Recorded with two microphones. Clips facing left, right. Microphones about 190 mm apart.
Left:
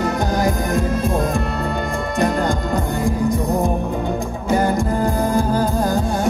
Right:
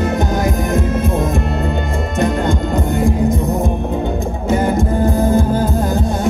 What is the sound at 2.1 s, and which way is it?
Music, 25° right (ahead or behind).